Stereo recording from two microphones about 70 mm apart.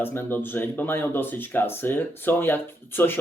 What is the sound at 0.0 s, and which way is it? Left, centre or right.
Speech, left.